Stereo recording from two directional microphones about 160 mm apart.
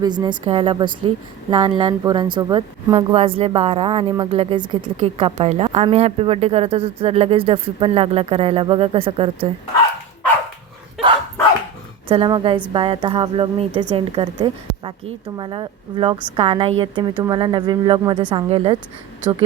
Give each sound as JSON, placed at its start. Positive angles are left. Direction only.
{"t": 0.0, "sound": "speech", "side_deg": -25}
{"t": 12.0, "sound": "a woman's voice", "side_deg": -30}